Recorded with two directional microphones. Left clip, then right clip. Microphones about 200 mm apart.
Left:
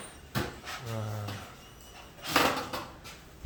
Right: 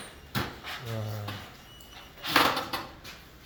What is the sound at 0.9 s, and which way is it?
Speech, 10° right (ahead or behind).